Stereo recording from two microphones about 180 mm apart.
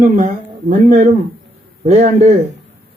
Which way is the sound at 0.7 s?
40° right (ahead or behind).